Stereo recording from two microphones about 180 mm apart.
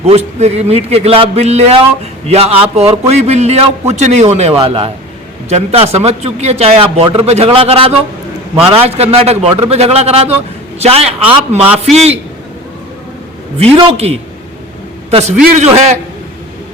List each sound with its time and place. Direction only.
0.0 s a man's voice: 35° right (ahead or behind)
11.5 s a man's voice: 10° right (ahead or behind)
13.7 s a man's voice: 35° right (ahead or behind)